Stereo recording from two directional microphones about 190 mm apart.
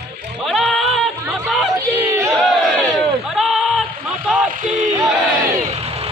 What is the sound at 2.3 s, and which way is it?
Battle cry, centre (ahead or behind).